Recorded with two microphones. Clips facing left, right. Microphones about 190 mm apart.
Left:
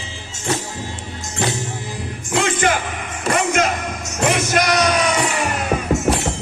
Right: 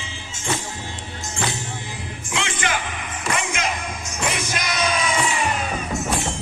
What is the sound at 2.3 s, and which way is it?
Music, 45° left (ahead or behind).